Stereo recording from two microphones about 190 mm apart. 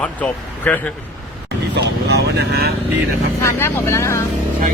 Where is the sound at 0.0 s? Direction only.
10° left (ahead or behind).